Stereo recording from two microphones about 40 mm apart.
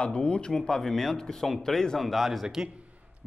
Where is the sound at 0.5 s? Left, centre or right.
Centre.